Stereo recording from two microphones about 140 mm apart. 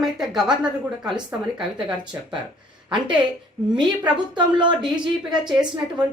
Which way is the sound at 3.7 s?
35° right (ahead or behind).